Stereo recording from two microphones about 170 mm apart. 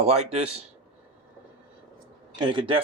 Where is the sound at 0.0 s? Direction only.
40° right (ahead or behind).